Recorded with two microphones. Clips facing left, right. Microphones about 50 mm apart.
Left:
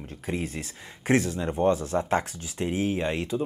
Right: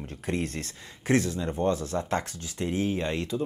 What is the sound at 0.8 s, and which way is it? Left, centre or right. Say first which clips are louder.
Speech: left 1 dB; left.